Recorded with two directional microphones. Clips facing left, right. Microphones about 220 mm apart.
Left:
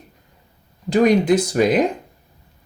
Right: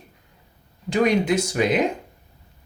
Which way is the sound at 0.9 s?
35° left (ahead or behind).